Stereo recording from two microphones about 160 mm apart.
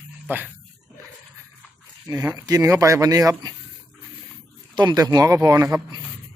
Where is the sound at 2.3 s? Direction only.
20° right (ahead or behind).